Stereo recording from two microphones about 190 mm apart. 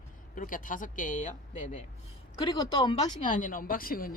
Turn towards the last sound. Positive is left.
turn(degrees=50)  # may be behind; listen again after turning